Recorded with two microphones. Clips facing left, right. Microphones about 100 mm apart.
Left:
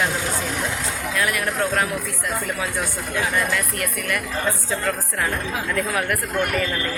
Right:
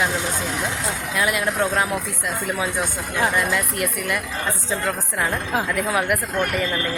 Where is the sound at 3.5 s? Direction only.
20° right (ahead or behind).